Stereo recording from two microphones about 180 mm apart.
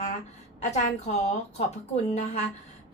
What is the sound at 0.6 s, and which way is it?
A woman's voice, 40° left (ahead or behind).